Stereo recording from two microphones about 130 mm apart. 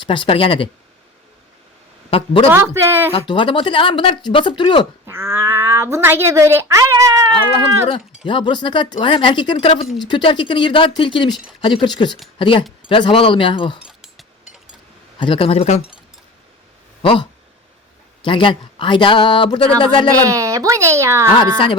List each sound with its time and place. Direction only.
0.1 s speech: 40° left (ahead or behind)
2.0 s speech: 45° left (ahead or behind)
2.5 s speech: 20° right (ahead or behind)
3.2 s speech: 40° left (ahead or behind)
5.0 s speech: 20° right (ahead or behind)
7.5 s speech: 45° left (ahead or behind)
13.8 s a sound: 5° right (ahead or behind)
15.2 s speech: 45° left (ahead or behind)
17.0 s speech: 45° left (ahead or behind)
20.2 s speech: 25° right (ahead or behind)